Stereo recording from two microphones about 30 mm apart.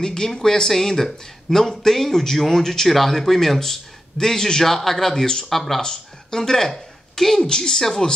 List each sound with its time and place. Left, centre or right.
0.0 s speech: left
5.8 s speech: centre
6.7 s a sound: centre
7.4 s speech: left